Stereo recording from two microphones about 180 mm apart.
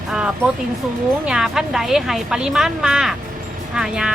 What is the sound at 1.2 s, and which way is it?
Speech, 5° right (ahead or behind).